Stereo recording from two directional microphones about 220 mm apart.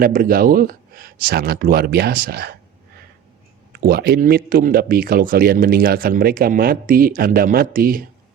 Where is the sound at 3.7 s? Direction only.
45° right (ahead or behind).